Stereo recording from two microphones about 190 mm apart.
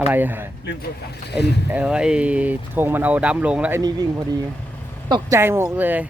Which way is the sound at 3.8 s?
20° right (ahead or behind).